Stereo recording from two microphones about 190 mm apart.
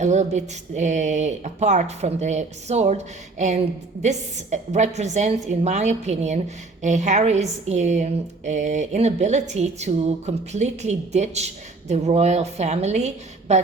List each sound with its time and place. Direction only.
0.0 s a woman's voice: 40° right (ahead or behind)